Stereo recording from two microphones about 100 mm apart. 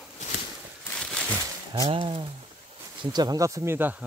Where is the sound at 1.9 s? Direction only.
60° right (ahead or behind).